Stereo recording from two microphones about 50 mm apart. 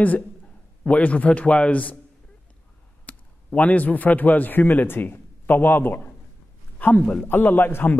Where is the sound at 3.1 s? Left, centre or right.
Left.